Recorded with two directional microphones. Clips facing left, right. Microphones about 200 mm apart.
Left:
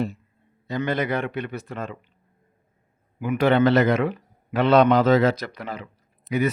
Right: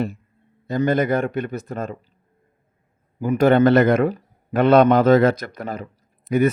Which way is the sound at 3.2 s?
45° right (ahead or behind).